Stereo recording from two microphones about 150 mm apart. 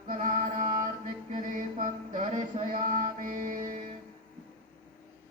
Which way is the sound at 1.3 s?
65° right (ahead or behind).